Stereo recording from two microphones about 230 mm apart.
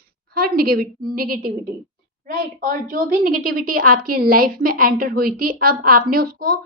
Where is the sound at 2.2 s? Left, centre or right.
Right.